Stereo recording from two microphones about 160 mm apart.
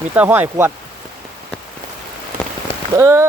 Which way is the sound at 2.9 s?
15° right (ahead or behind).